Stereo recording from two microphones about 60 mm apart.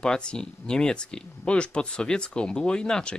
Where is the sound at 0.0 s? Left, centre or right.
Centre.